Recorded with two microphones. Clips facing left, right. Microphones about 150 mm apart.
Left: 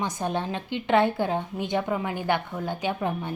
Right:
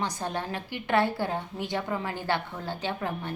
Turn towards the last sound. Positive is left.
turn(degrees=15)  # may be behind; listen again after turning